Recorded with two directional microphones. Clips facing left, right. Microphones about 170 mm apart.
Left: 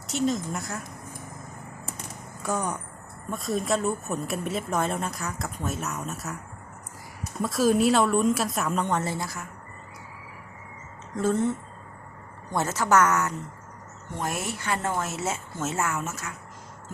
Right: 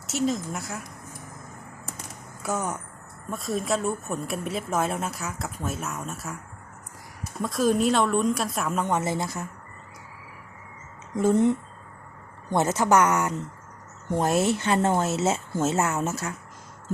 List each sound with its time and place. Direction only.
0.1 s speech: centre (ahead or behind)
2.4 s speech: 5° right (ahead or behind)
7.4 s speech: 5° left (ahead or behind); by 9.5 s 25° right (ahead or behind)
11.2 s speech: 15° right (ahead or behind)
14.2 s speech: 25° right (ahead or behind)